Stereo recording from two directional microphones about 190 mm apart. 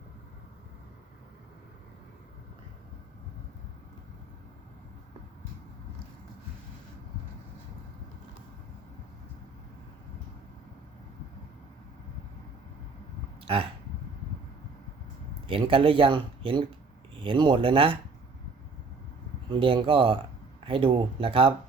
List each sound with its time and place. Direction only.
13.4 s a sound: 30° right (ahead or behind)
15.4 s speech: 30° right (ahead or behind)
19.5 s speech: 30° right (ahead or behind)